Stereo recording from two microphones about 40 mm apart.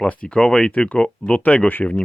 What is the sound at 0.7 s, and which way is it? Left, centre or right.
Speech, left.